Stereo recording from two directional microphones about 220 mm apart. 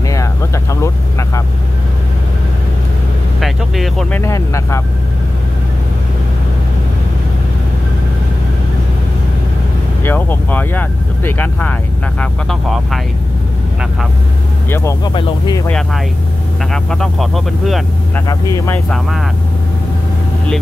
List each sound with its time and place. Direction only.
0.1 s vehicle: 15° left (ahead or behind)
3.3 s speech: centre (ahead or behind)
4.2 s speech: 15° left (ahead or behind)
10.0 s speech: 10° left (ahead or behind)
14.7 s speech: 10° left (ahead or behind)
16.7 s speech: centre (ahead or behind)